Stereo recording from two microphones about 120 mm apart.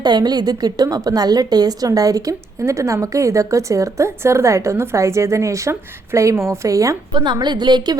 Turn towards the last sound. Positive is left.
turn(degrees=-35)  # may be behind; listen again after turning